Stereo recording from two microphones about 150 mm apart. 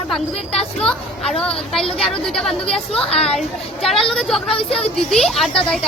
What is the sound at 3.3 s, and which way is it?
Speech, centre (ahead or behind).